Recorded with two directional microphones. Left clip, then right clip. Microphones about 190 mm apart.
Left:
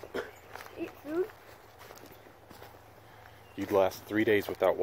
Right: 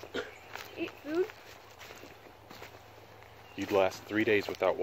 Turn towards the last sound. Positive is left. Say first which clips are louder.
# left 2 dB
turn(degrees=35)  # may be behind; listen again after turning